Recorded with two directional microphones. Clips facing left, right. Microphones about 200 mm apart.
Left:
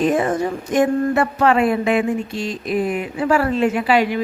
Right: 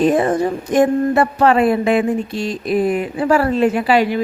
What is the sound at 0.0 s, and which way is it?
Speech, 35° right (ahead or behind).